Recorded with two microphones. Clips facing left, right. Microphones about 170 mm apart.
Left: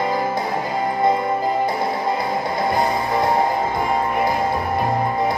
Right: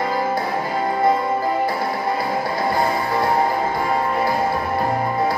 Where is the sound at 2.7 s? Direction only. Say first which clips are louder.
Left 1 dB; 20° left (ahead or behind).